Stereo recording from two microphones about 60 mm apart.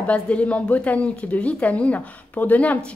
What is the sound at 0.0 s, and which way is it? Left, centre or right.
Speech, left.